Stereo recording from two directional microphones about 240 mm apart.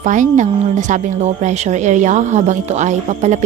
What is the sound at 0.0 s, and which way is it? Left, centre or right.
Speech, right.